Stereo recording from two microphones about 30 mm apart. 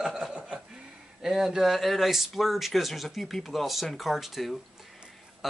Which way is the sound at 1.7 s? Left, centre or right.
Centre.